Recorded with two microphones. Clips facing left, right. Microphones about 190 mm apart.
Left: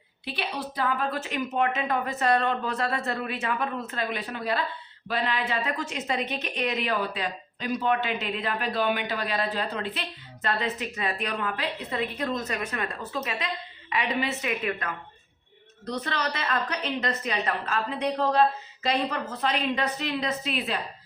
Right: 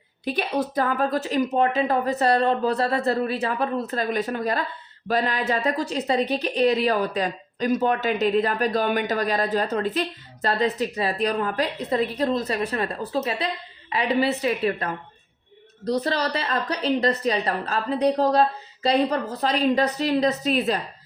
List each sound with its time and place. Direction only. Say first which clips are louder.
0.3 s a woman's voice: right 8 dB; 45° right (ahead or behind)